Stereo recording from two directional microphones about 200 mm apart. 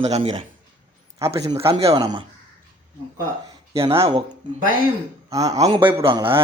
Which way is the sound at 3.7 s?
30° right (ahead or behind).